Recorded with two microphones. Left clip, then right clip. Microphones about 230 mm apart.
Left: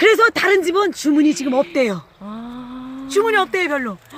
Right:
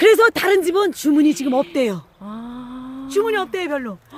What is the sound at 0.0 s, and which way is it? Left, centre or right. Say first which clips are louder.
Speech: even; right.